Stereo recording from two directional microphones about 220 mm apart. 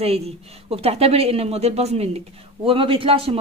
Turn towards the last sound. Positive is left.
turn(degrees=-25)  # may be behind; listen again after turning